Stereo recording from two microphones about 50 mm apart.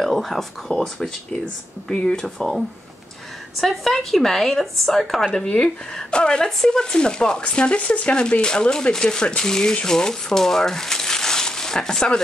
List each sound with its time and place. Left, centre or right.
0.0 s speech: centre
3.6 s speech: centre
5.3 s speech: left